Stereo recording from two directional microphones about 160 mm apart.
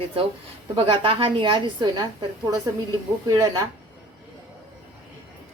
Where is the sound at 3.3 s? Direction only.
25° right (ahead or behind).